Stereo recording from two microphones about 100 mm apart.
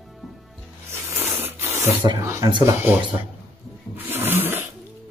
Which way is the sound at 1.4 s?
20° right (ahead or behind).